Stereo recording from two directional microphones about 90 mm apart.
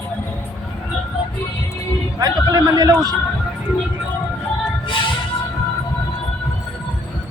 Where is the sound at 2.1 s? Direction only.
45° right (ahead or behind).